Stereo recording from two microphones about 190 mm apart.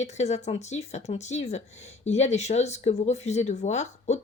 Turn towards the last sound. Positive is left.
turn(degrees=35)  # may be behind; listen again after turning